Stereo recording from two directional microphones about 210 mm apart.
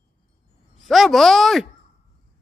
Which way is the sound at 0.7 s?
Centre (ahead or behind).